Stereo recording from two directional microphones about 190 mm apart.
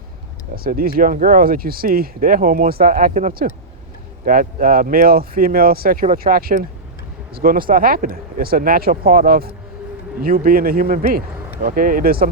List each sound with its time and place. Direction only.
0.5 s speech: 50° right (ahead or behind)